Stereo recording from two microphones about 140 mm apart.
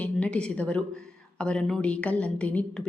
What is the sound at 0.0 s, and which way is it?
A woman's voice, 10° left (ahead or behind).